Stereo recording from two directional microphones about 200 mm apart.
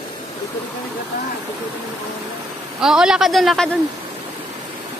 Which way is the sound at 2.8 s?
5° right (ahead or behind).